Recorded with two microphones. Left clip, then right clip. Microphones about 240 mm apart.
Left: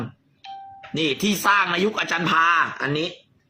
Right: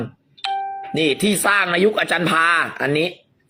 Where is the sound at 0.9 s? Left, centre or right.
Centre.